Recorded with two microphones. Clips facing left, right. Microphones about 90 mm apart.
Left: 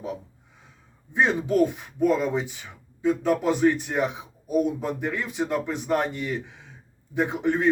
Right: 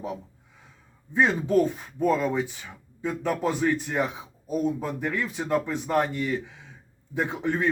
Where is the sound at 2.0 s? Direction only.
15° left (ahead or behind).